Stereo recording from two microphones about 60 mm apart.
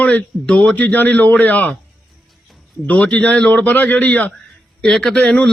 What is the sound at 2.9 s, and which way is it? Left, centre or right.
A man's voice, left.